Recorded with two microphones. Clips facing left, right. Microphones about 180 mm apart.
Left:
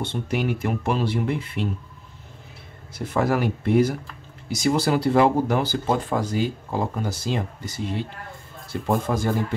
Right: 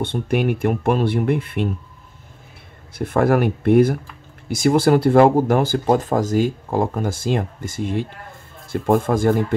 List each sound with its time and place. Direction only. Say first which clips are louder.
0.0 s speech: right 5 dB; 55° right (ahead or behind)
3.0 s speech: right 5 dB; 55° right (ahead or behind)